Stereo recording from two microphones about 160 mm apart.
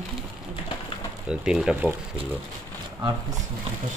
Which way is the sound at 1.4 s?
5° right (ahead or behind).